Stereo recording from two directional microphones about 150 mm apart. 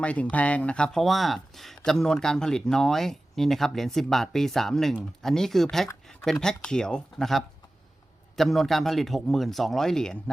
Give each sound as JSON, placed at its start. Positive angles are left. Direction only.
{"t": 0.0, "sound": "speech", "side_deg": 10}